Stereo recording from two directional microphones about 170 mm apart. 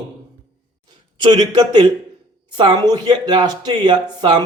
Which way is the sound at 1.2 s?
25° right (ahead or behind).